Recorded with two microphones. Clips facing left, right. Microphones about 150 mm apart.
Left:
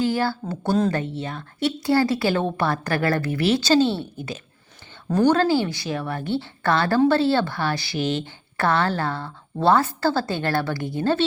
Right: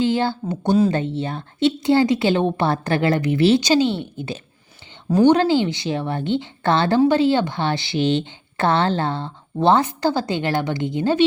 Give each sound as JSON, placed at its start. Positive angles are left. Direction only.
{"t": 0.0, "sound": "speech", "side_deg": -20}
{"t": 3.6, "sound": "a woman's voice", "side_deg": -15}